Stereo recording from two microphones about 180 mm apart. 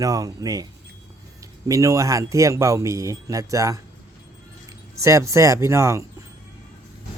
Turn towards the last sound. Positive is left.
turn(degrees=-15)  # may be behind; listen again after turning